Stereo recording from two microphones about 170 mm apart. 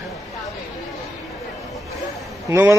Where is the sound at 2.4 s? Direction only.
15° right (ahead or behind).